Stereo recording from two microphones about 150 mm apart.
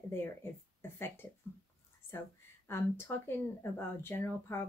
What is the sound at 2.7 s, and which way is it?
Speech, 15° left (ahead or behind).